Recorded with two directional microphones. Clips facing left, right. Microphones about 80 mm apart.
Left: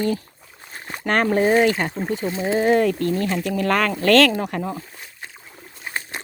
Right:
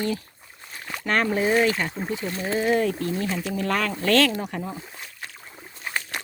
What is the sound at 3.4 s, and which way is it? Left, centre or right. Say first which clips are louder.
Speech: left 6 dB; left.